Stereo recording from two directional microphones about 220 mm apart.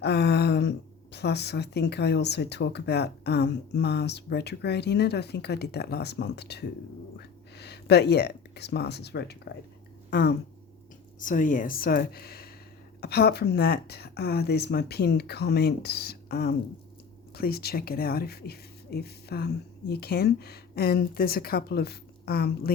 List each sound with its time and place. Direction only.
0.0 s speech: 50° left (ahead or behind)